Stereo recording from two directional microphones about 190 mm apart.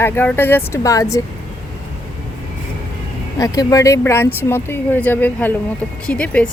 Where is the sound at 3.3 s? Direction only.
20° left (ahead or behind).